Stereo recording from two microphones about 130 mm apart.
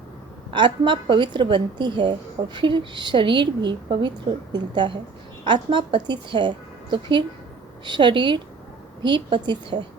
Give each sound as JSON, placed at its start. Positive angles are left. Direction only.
{"t": 0.5, "sound": "a woman's voice", "side_deg": -40}